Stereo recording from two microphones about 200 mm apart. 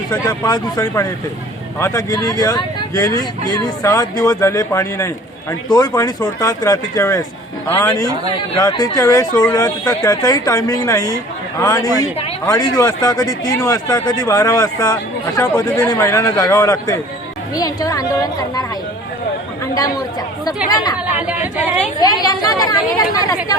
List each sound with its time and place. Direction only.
0.1 s speech: 20° left (ahead or behind)
20.7 s speech: 20° left (ahead or behind)
21.2 s speech: 5° right (ahead or behind)
21.9 s speech: 20° left (ahead or behind)